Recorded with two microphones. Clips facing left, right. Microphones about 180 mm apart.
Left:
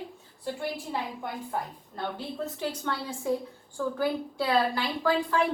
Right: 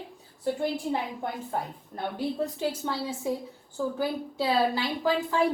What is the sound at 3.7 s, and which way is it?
A woman's voice, 20° right (ahead or behind).